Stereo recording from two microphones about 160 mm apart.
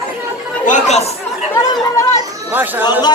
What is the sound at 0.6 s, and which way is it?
Speech, 50° left (ahead or behind).